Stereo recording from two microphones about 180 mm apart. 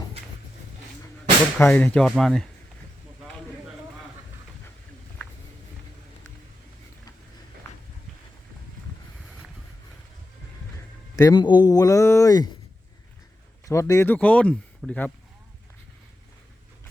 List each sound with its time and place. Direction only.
1.5 s speech: 10° left (ahead or behind)
9.1 s a sound: centre (ahead or behind)
11.2 s speech: 20° left (ahead or behind)
13.7 s speech: 15° left (ahead or behind)